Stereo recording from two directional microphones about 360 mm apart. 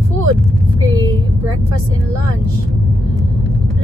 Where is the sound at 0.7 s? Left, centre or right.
Centre.